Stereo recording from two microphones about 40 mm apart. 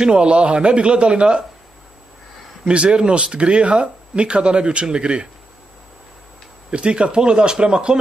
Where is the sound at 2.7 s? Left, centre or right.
Right.